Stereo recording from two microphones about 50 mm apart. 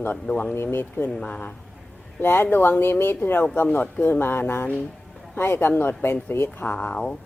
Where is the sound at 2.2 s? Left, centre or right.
Left.